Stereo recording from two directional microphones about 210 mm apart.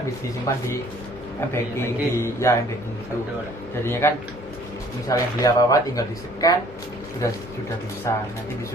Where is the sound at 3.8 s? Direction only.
10° left (ahead or behind).